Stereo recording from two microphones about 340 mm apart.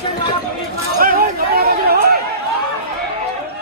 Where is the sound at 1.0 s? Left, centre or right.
Right.